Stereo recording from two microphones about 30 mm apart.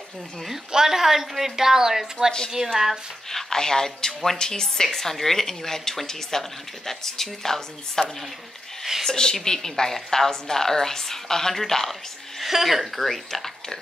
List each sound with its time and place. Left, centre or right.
0.7 s a woman's voice: centre
3.3 s a woman's voice: centre
9.1 s a woman's voice: left
12.4 s speech: centre
13.0 s speech: centre